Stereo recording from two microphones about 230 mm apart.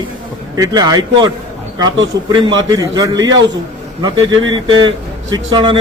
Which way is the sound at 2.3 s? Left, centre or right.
Centre.